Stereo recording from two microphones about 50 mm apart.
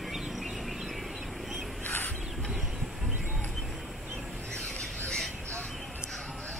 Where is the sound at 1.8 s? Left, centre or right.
Left.